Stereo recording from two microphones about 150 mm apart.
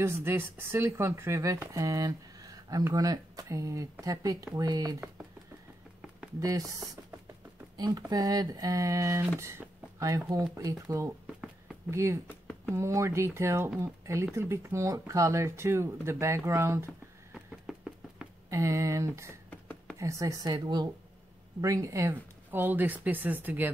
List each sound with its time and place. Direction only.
0.0 s speech: 15° right (ahead or behind)
6.4 s speech: 20° right (ahead or behind)
12.3 s a sound: 10° left (ahead or behind)
12.7 s speech: 20° right (ahead or behind)
17.3 s a sound: 5° right (ahead or behind)
18.5 s speech: 20° right (ahead or behind)
19.5 s whispering: 15° left (ahead or behind)
20.0 s speech: 20° right (ahead or behind)